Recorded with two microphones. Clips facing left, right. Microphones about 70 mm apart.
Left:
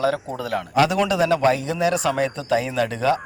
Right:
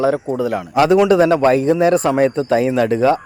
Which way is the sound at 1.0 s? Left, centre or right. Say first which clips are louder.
Right 6 dB; right.